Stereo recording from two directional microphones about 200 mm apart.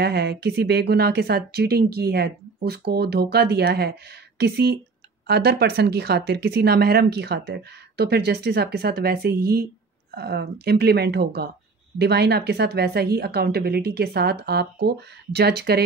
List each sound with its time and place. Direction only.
0.0 s a woman's voice: 55° right (ahead or behind)